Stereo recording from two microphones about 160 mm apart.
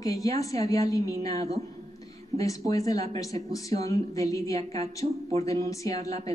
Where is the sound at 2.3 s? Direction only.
20° left (ahead or behind).